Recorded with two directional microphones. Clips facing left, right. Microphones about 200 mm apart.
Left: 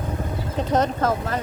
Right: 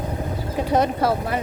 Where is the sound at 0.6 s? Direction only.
10° right (ahead or behind).